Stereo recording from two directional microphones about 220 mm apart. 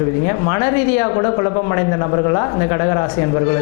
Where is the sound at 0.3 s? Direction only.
20° left (ahead or behind).